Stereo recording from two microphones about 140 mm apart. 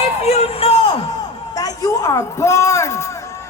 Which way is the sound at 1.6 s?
25° left (ahead or behind).